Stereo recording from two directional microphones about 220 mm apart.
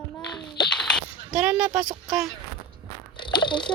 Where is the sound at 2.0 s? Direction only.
Centre (ahead or behind).